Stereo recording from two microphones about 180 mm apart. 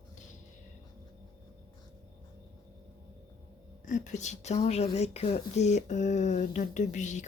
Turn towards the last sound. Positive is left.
turn(degrees=40)  # may be behind; listen again after turning